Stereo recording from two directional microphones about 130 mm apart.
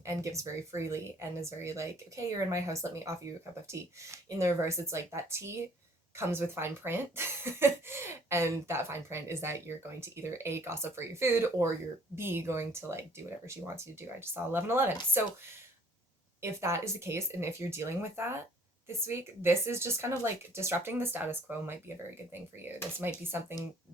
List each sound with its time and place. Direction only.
0.0 s speech: 25° right (ahead or behind)
16.4 s speech: 20° right (ahead or behind)